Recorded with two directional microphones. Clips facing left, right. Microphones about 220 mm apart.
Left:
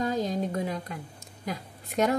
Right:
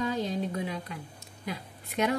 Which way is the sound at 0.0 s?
45° left (ahead or behind).